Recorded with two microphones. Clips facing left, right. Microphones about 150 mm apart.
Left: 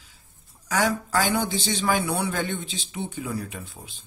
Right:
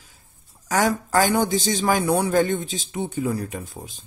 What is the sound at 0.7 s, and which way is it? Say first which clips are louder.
Speech: right 3 dB; 45° right (ahead or behind).